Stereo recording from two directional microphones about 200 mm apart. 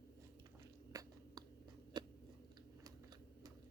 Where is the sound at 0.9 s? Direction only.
15° right (ahead or behind).